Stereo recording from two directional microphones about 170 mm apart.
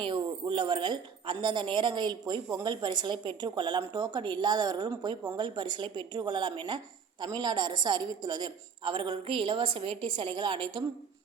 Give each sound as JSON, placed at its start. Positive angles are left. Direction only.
{"t": 0.0, "sound": "a woman's voice", "side_deg": -30}